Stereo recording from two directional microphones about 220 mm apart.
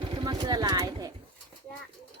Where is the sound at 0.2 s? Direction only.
20° right (ahead or behind).